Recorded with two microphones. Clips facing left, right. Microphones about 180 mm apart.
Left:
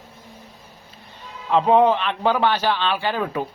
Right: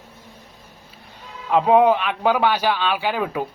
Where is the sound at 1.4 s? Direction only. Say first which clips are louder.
Right 1 dB; 10° right (ahead or behind).